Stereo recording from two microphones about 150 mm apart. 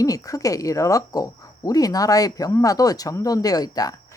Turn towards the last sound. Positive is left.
turn(degrees=25)  # may be behind; listen again after turning